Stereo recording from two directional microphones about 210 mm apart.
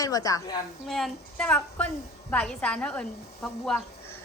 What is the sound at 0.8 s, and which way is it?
Speech, centre (ahead or behind).